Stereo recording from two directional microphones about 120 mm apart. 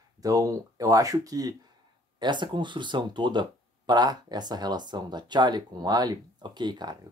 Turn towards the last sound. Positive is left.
turn(degrees=-35)  # may be behind; listen again after turning